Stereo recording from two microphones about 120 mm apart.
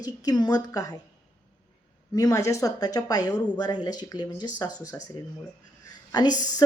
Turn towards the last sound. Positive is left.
turn(degrees=35)  # may be behind; listen again after turning